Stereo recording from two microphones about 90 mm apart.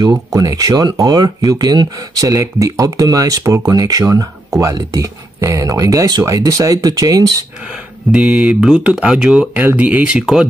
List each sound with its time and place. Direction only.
0.0 s speech: 45° right (ahead or behind)
7.7 s speech: 10° right (ahead or behind)